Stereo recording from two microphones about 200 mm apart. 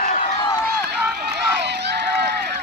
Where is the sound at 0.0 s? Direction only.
40° left (ahead or behind).